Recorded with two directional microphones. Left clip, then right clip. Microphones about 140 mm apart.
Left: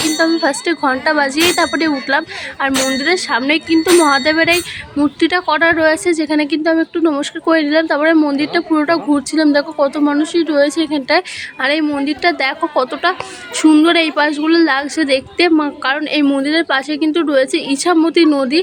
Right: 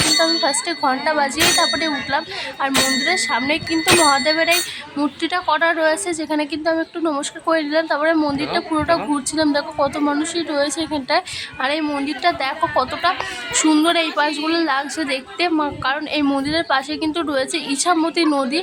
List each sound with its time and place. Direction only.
0.2 s a woman's voice: 25° left (ahead or behind)
16.0 s a woman's voice: 10° left (ahead or behind)